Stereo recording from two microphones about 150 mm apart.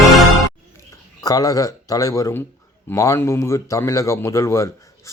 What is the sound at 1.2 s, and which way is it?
Speech, 25° left (ahead or behind).